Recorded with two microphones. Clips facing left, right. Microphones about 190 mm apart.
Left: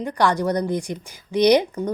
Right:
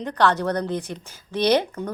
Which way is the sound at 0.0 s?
10° left (ahead or behind).